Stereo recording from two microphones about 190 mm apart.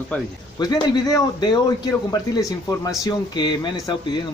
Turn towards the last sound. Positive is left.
turn(degrees=20)  # may be behind; listen again after turning